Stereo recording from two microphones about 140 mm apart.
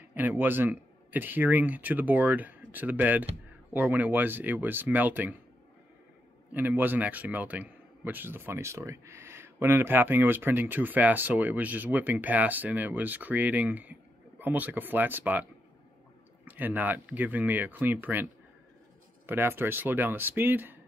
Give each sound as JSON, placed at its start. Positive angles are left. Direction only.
{"t": 0.1, "sound": "a man's voice", "side_deg": -15}
{"t": 6.5, "sound": "a man's voice", "side_deg": -15}
{"t": 16.4, "sound": "a man's voice", "side_deg": -10}